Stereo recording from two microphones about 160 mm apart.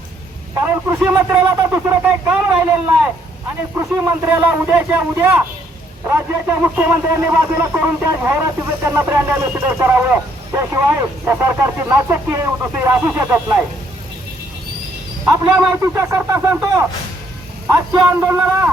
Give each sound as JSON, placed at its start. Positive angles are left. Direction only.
{"t": 0.9, "sound": "speech", "side_deg": -10}
{"t": 15.2, "sound": "a man's voice", "side_deg": -15}